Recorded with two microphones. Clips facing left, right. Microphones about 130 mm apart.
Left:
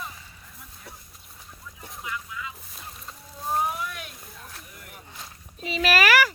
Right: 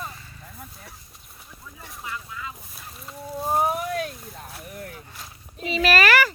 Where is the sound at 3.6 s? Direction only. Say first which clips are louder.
Right 5 dB; 50° right (ahead or behind).